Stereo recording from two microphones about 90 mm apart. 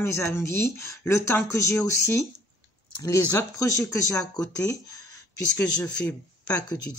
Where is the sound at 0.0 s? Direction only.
30° left (ahead or behind).